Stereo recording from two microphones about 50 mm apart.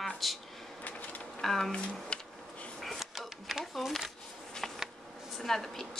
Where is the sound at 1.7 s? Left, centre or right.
Centre.